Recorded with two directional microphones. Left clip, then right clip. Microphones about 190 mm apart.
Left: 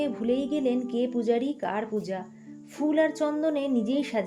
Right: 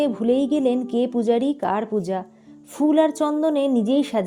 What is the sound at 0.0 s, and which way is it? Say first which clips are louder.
A woman's voice: right 7 dB; 40° right (ahead or behind).